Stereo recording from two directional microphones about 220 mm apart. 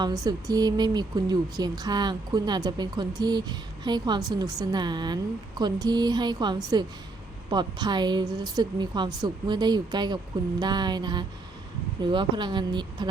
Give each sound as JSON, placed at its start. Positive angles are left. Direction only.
{"t": 0.0, "sound": "a woman's voice", "side_deg": -15}